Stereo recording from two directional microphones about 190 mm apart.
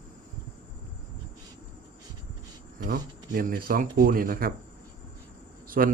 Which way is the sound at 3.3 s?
45° right (ahead or behind).